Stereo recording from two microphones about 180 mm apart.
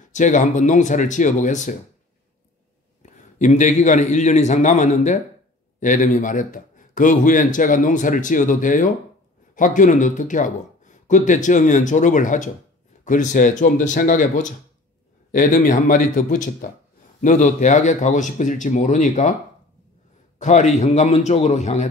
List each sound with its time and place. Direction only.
0.1 s speech: 45° left (ahead or behind)
3.0 s a man's voice: 45° left (ahead or behind)
20.3 s a man's voice: 40° left (ahead or behind)